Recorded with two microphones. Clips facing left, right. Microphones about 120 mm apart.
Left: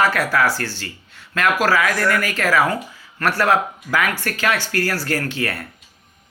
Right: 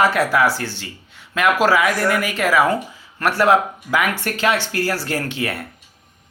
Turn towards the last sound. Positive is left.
turn(degrees=-20)  # may be behind; listen again after turning